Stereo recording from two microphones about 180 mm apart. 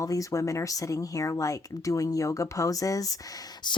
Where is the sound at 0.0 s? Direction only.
20° left (ahead or behind).